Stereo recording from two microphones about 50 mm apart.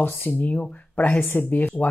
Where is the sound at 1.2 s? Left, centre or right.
Left.